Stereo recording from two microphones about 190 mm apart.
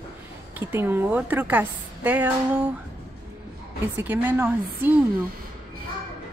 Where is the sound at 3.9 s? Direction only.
10° right (ahead or behind).